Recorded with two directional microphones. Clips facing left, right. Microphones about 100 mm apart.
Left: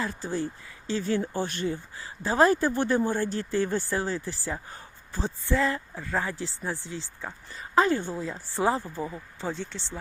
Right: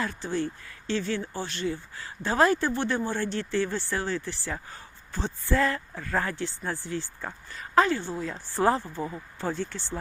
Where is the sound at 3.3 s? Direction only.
40° left (ahead or behind).